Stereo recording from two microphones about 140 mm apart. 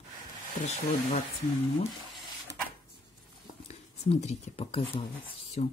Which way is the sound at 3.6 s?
50° left (ahead or behind).